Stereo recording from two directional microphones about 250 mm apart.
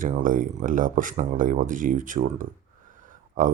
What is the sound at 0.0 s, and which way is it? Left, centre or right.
Speech, right.